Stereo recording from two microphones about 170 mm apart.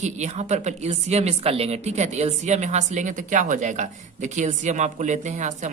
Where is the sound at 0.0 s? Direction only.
40° right (ahead or behind).